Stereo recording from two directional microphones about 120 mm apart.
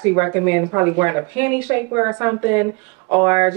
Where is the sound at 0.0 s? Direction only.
25° right (ahead or behind).